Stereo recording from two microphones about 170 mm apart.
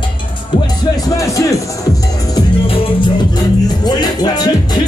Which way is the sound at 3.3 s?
25° left (ahead or behind).